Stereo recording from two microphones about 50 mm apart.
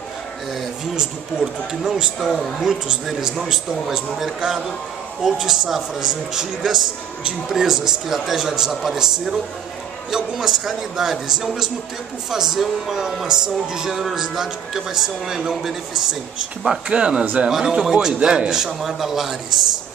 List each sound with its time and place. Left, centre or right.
0.9 s music: centre
2.1 s speech: centre
2.9 s music: centre
16.9 s speech: centre
17.5 s music: centre